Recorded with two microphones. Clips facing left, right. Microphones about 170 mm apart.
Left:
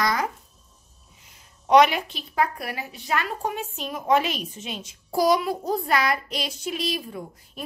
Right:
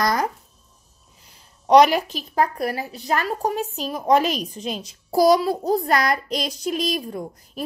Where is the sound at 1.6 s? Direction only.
35° right (ahead or behind).